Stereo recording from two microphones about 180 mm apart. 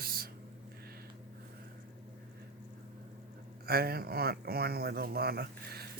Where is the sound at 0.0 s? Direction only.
55° right (ahead or behind).